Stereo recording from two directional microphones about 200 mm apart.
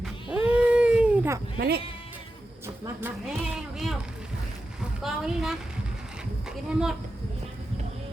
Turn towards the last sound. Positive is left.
turn(degrees=-5)  # may be behind; listen again after turning